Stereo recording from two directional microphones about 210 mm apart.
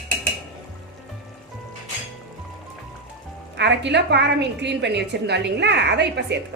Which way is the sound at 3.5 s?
55° right (ahead or behind).